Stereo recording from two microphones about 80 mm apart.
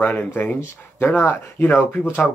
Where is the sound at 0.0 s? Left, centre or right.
Left.